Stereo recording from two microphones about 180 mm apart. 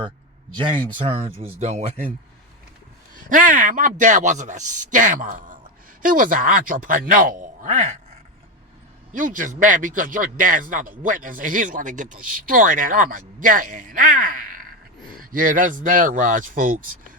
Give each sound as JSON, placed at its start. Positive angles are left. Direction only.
{"t": 0.5, "sound": "speech", "side_deg": -25}
{"t": 3.2, "sound": "a man's voice", "side_deg": -45}
{"t": 9.1, "sound": "a man's voice", "side_deg": -45}